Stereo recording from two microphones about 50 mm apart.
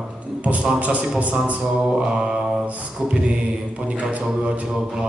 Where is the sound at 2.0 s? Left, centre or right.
Centre.